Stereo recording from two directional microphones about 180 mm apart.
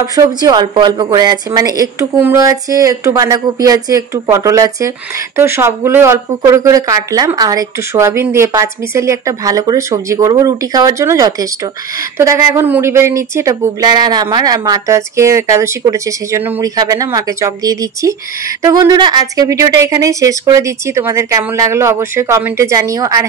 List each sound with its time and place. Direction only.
0.0 s a woman's voice: 20° right (ahead or behind)